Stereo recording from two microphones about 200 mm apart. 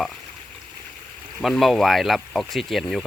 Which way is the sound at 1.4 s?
Centre (ahead or behind).